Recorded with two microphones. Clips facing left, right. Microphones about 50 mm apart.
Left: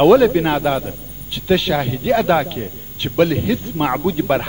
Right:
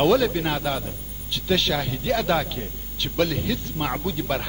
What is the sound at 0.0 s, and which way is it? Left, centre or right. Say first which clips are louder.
A man's voice: left 9 dB; left.